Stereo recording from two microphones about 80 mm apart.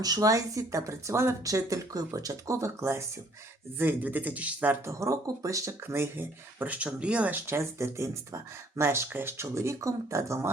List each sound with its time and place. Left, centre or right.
0.0 s speech: right
3.8 s a man's voice: right
4.9 s speech: right